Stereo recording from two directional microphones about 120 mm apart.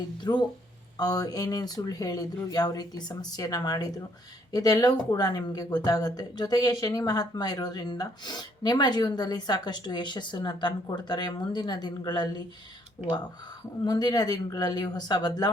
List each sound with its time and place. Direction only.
0.2 s speech: 40° left (ahead or behind)
13.8 s speech: 35° left (ahead or behind)